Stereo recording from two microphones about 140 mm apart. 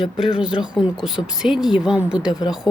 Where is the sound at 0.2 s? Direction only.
5° right (ahead or behind).